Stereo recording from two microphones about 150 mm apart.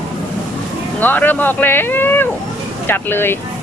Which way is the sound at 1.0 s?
10° left (ahead or behind).